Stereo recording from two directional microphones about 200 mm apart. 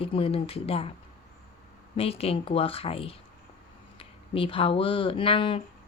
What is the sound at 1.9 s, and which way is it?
Speech, 30° left (ahead or behind).